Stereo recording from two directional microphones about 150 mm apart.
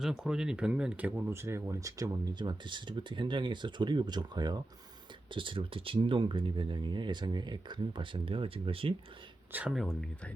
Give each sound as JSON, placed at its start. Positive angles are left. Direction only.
{"t": 0.0, "sound": "speech", "side_deg": -5}
{"t": 9.5, "sound": "speech", "side_deg": -10}
{"t": 9.7, "sound": "speech", "side_deg": 0}